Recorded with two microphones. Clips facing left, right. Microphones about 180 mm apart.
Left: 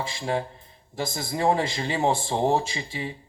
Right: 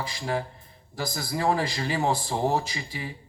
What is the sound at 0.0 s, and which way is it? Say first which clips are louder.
Speech: left 2 dB; 25° left (ahead or behind).